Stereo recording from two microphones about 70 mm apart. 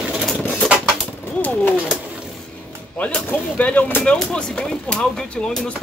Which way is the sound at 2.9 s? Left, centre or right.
Centre.